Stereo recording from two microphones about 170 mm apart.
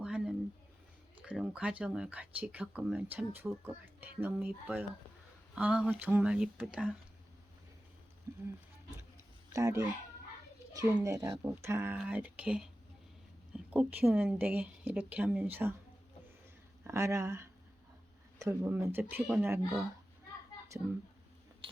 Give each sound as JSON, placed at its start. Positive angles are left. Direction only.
{"t": 0.0, "sound": "a sound", "side_deg": -5}
{"t": 1.8, "sound": "speech", "side_deg": -5}
{"t": 8.3, "sound": "speech", "side_deg": -15}
{"t": 9.5, "sound": "speech", "side_deg": -20}
{"t": 13.7, "sound": "speech", "side_deg": -10}
{"t": 16.8, "sound": "speech", "side_deg": -15}